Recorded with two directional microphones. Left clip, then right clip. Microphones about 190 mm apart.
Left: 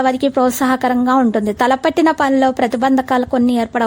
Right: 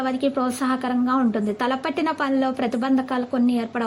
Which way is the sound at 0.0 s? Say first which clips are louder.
Left 9 dB; 45° left (ahead or behind).